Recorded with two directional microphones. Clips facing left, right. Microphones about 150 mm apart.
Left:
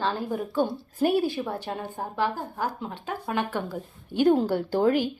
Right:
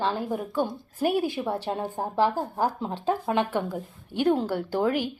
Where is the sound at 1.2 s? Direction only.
25° right (ahead or behind).